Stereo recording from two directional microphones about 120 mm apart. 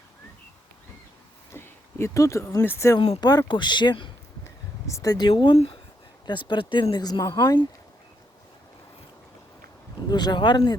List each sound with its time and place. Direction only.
1.5 s speech: 20° left (ahead or behind)
3.2 s speech: 35° left (ahead or behind)
4.9 s speech: 25° left (ahead or behind)
5.5 s speech: 50° left (ahead or behind)
6.2 s speech: 40° left (ahead or behind)
10.1 s speech: 35° left (ahead or behind)